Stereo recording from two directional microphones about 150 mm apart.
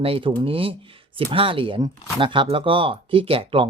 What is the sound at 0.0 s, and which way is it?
Speech, 35° right (ahead or behind).